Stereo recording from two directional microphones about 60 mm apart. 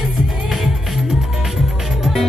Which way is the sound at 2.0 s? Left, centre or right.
Centre.